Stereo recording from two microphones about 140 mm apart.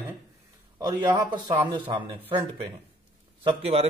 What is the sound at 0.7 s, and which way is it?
Speech, 25° right (ahead or behind).